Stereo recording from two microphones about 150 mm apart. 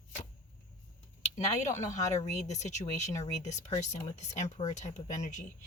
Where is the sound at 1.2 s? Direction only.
50° left (ahead or behind).